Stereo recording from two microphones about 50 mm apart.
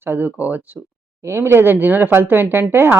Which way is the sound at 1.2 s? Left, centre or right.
Right.